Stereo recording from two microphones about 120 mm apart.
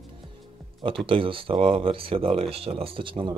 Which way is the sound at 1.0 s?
45° right (ahead or behind).